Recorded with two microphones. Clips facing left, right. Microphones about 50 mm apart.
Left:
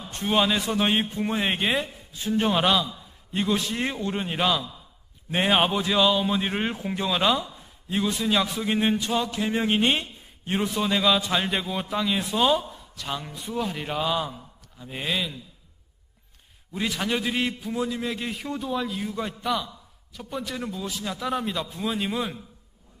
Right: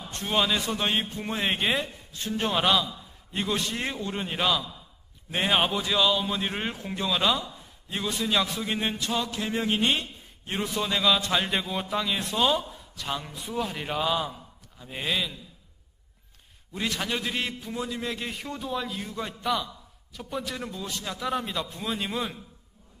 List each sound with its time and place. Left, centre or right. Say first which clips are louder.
0.1 s a man's voice: left 5 dB; centre
0.3 s a man's voice: left 3 dB; centre
9.6 s a man's voice: left 2 dB; centre
16.7 s a man's voice: left 3 dB; centre